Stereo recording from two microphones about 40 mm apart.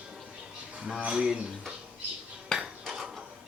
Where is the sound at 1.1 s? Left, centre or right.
Centre.